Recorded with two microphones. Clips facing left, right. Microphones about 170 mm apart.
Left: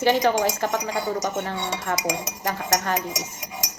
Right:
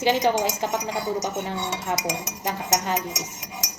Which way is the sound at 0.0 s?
15° right (ahead or behind).